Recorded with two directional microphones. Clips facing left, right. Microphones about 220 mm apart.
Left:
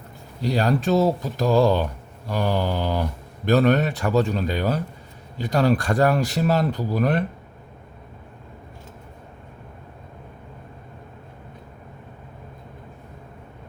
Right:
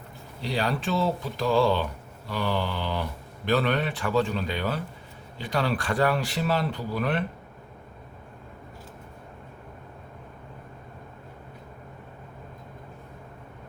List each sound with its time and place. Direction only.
0.4 s speech: 45° left (ahead or behind)